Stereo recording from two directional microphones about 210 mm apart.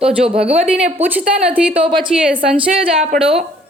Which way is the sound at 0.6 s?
5° right (ahead or behind).